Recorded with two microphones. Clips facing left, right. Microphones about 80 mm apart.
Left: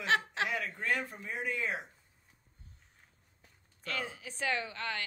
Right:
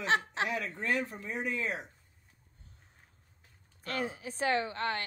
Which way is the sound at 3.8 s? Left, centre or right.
Right.